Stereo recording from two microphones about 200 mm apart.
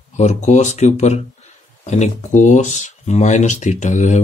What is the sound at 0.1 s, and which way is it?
Speech, 35° left (ahead or behind).